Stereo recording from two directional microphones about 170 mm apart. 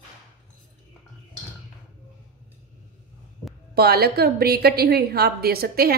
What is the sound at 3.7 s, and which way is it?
Speech, 65° right (ahead or behind).